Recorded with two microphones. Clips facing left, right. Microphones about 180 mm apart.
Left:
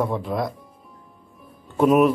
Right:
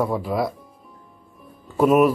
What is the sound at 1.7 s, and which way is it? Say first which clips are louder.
Speech: even; centre (ahead or behind).